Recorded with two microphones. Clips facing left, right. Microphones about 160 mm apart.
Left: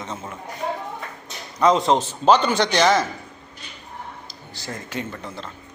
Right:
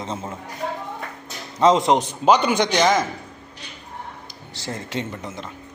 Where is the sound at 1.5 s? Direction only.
20° right (ahead or behind).